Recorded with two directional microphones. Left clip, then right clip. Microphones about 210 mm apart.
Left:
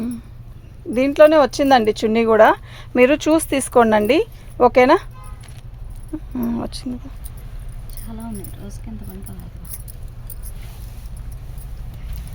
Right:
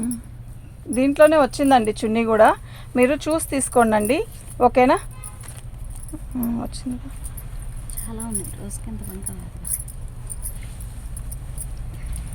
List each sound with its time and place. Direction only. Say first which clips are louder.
0.9 s speech: left 3 dB; 45° left (ahead or behind)
6.3 s speech: left 2 dB; 45° left (ahead or behind)
8.0 s speech: right 1 dB; 15° right (ahead or behind)